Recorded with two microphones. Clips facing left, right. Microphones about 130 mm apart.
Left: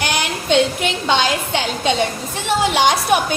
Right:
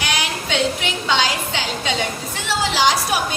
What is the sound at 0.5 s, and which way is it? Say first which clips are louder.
A woman's voice: left 6 dB; 50° left (ahead or behind).